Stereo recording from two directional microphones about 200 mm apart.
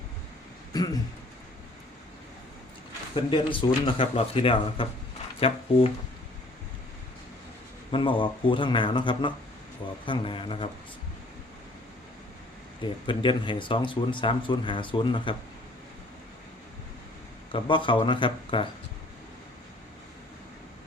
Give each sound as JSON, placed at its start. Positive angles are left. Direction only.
{"t": 0.7, "sound": "speech", "side_deg": 20}
{"t": 3.2, "sound": "speech", "side_deg": 25}
{"t": 7.9, "sound": "speech", "side_deg": 25}
{"t": 12.8, "sound": "speech", "side_deg": 25}
{"t": 17.5, "sound": "speech", "side_deg": 25}